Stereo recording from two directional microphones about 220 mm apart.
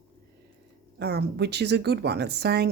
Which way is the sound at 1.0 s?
50° right (ahead or behind).